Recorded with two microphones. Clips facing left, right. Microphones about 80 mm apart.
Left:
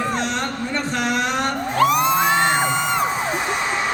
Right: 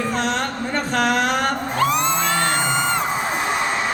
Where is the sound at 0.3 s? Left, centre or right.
Right.